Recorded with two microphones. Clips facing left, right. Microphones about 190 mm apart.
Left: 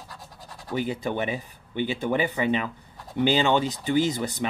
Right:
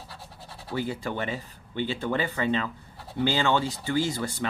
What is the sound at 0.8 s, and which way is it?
Speech, 15° left (ahead or behind).